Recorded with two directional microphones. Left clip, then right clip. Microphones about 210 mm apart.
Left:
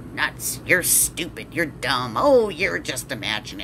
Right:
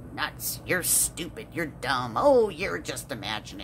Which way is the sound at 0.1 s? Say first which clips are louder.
Left 7 dB; 20° right (ahead or behind).